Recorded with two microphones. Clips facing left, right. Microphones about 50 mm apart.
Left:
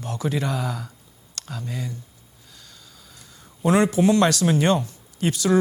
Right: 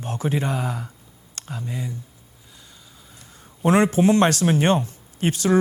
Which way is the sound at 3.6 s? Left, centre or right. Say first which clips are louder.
Right 1 dB; right.